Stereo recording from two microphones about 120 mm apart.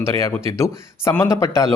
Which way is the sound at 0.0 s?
25° left (ahead or behind).